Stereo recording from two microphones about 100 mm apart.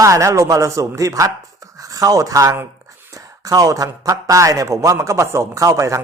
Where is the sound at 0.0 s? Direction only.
30° right (ahead or behind).